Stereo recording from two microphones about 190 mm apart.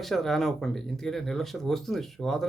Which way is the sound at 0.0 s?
Centre (ahead or behind).